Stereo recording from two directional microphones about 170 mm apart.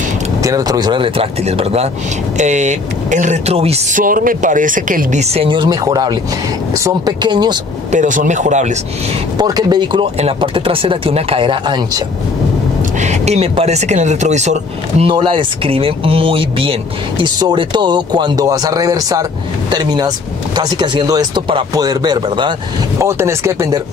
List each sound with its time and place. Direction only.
0.4 s speech: 20° right (ahead or behind); by 4.0 s 35° right (ahead or behind)
4.0 s speech: 55° right (ahead or behind); by 7.5 s 25° right (ahead or behind)
7.9 s speech: 45° right (ahead or behind)
9.4 s speech: 25° right (ahead or behind)
13.0 s speech: 40° right (ahead or behind); by 22.5 s 25° right (ahead or behind)
22.9 s speech: 15° right (ahead or behind)